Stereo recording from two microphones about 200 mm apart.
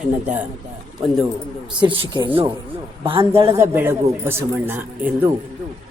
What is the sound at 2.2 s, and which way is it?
Speech, 25° right (ahead or behind).